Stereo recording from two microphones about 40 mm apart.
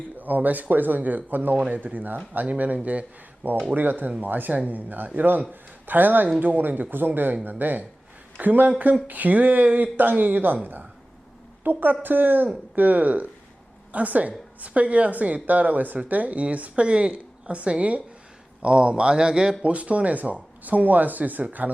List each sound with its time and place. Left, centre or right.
0.2 s speech: right
3.7 s speech: right